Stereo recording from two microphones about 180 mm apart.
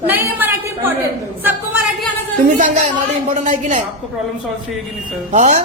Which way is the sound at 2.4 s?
45° right (ahead or behind).